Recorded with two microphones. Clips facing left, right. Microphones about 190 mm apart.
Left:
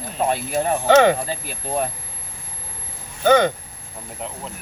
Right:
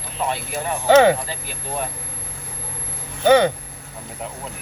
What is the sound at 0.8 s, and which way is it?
Speech, 10° right (ahead or behind).